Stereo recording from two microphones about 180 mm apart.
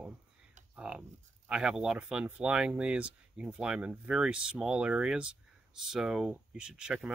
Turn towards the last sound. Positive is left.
turn(degrees=-5)  # may be behind; listen again after turning